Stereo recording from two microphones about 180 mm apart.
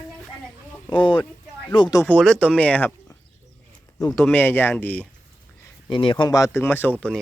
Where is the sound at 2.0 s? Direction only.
5° left (ahead or behind).